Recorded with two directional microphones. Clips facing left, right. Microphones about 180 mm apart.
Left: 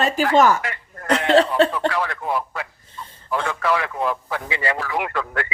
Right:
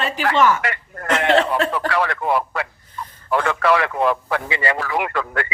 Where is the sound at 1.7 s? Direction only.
75° right (ahead or behind).